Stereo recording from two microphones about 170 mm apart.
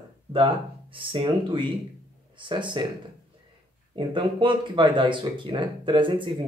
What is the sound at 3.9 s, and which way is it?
Speech, 30° right (ahead or behind).